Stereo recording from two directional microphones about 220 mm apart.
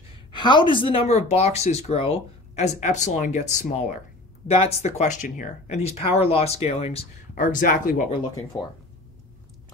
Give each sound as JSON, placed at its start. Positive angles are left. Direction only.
{"t": 0.1, "sound": "speech", "side_deg": 20}
{"t": 8.2, "sound": "speech", "side_deg": 20}